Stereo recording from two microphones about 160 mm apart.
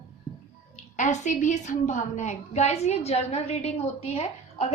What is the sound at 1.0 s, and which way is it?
A woman's voice, 50° left (ahead or behind).